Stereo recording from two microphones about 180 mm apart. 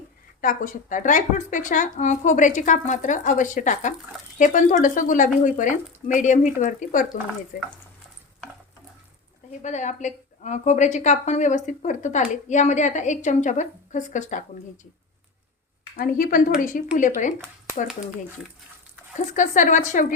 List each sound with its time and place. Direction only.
0.4 s a woman's voice: 45° left (ahead or behind)
9.5 s a woman's voice: 40° left (ahead or behind)
16.0 s a woman's voice: 50° left (ahead or behind)
19.4 s a woman's voice: 45° left (ahead or behind)